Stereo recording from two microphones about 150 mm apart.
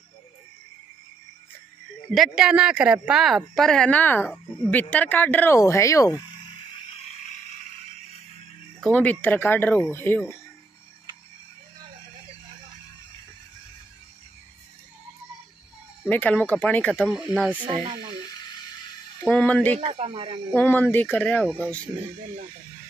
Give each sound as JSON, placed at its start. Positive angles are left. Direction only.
{"t": 2.1, "sound": "speech", "side_deg": 0}
{"t": 8.8, "sound": "speech", "side_deg": 10}
{"t": 16.1, "sound": "speech", "side_deg": 10}
{"t": 17.1, "sound": "speech", "side_deg": -5}
{"t": 19.2, "sound": "speech", "side_deg": 5}
{"t": 19.8, "sound": "speech", "side_deg": -40}
{"t": 20.5, "sound": "speech", "side_deg": 10}